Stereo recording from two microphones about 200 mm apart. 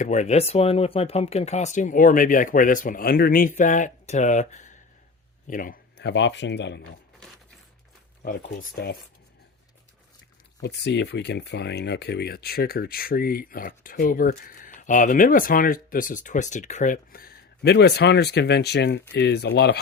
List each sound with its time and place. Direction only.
0.0 s speech: 35° left (ahead or behind); by 6.8 s 60° left (ahead or behind)
8.2 s speech: 45° left (ahead or behind)
10.6 s speech: 60° left (ahead or behind)